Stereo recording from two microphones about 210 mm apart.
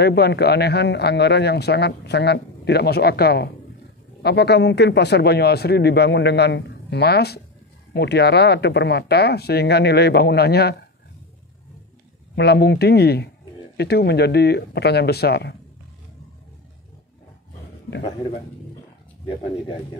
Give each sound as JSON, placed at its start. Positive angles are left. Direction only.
{"t": 0.0, "sound": "speech", "side_deg": 50}
{"t": 12.4, "sound": "speech", "side_deg": 50}